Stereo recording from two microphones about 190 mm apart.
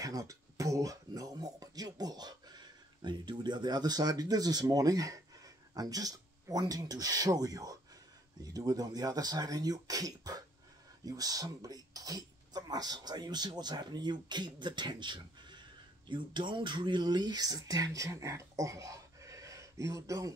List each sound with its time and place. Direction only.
0.0 s speech: 20° right (ahead or behind)